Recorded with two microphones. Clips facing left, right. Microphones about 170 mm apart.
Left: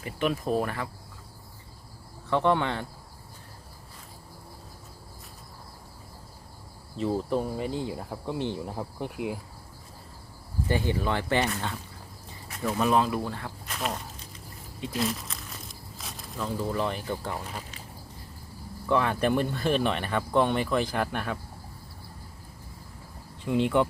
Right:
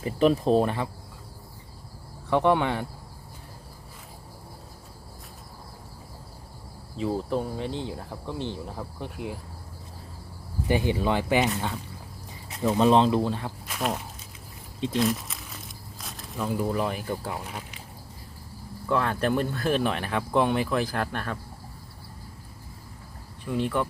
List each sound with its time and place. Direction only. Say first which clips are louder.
0.0 s speech: right 7 dB; 35° right (ahead or behind)
2.3 s speech: right 2 dB; 15° right (ahead or behind)
6.9 s speech: even; centre (ahead or behind)
10.7 s speech: right 3 dB; 15° right (ahead or behind)
13.7 s walk: right 3 dB; 5° right (ahead or behind)
14.9 s speech: right 4 dB; centre (ahead or behind)
18.9 s speech: even; centre (ahead or behind)
23.4 s speech: left 3 dB; 20° left (ahead or behind)